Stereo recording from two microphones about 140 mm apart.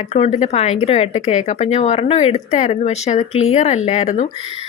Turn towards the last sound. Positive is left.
turn(degrees=55)  # may be behind; listen again after turning